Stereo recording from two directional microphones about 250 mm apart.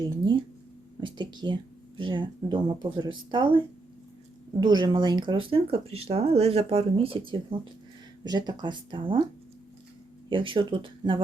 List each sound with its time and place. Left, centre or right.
1.0 s speech: centre
4.6 s speech: centre
10.2 s speech: right